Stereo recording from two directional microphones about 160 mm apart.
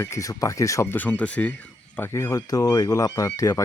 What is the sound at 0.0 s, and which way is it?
Speech, 20° left (ahead or behind).